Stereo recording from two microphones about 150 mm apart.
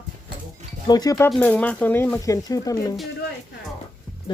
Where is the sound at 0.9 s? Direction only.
25° left (ahead or behind).